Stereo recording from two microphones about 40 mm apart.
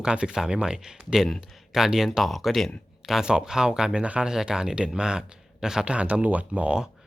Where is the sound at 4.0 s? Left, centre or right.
Right.